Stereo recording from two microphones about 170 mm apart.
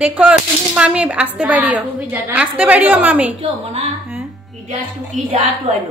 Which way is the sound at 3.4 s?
35° right (ahead or behind).